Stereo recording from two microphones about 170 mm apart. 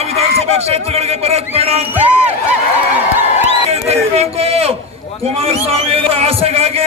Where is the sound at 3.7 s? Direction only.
40° right (ahead or behind).